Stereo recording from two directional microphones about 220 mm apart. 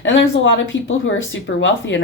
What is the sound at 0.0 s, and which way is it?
Speech, 55° left (ahead or behind).